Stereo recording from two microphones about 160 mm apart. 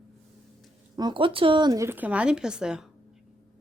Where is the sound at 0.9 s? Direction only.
30° right (ahead or behind).